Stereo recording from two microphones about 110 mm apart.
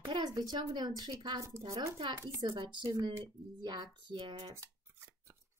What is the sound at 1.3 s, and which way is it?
Speech, 30° right (ahead or behind).